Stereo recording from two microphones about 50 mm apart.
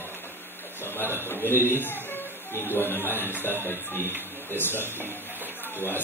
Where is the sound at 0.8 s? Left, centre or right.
Left.